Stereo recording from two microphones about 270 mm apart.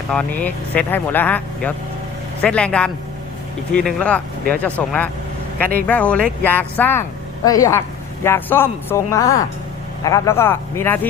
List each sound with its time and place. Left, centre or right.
0.1 s speech: centre